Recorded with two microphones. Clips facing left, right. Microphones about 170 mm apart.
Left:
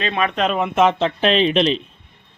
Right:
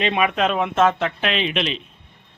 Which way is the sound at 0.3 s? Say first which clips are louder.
Left 1 dB; centre (ahead or behind).